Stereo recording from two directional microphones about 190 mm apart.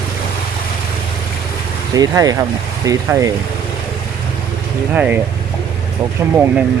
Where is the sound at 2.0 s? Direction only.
20° right (ahead or behind).